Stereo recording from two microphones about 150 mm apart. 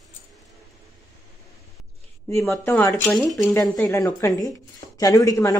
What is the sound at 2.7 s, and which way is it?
A woman's voice, 15° left (ahead or behind).